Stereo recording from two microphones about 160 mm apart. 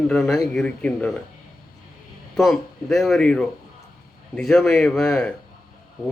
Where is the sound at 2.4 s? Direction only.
Centre (ahead or behind).